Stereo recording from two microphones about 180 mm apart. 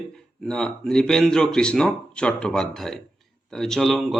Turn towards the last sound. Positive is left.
turn(degrees=0)  # may be behind; listen again after turning